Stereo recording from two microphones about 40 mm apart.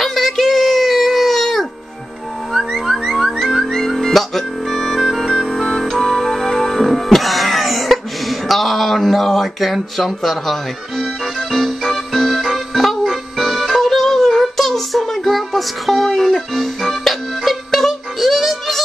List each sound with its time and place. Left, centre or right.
0.0 s a sound: centre
2.5 s music: centre
5.3 s music: centre
5.7 s music: centre